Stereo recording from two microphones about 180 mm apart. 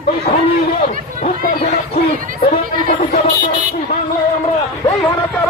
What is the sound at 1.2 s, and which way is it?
Speech, 50° left (ahead or behind).